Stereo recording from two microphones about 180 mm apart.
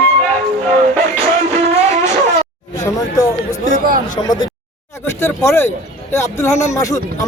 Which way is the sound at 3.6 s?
50° right (ahead or behind).